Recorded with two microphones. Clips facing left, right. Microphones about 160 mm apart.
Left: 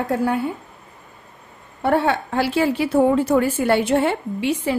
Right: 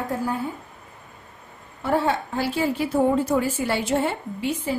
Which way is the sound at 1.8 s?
65° left (ahead or behind).